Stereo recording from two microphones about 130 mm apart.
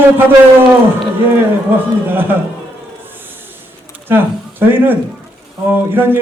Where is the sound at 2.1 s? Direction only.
15° right (ahead or behind).